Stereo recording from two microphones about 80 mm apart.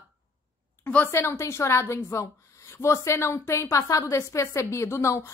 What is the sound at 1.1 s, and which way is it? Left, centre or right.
A woman's voice, left.